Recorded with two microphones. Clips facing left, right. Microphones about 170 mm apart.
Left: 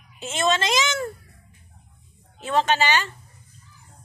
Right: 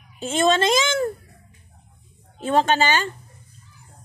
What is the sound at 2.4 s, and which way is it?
Speech, 45° right (ahead or behind).